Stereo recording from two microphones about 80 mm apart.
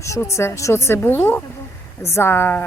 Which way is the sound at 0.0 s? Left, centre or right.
Left.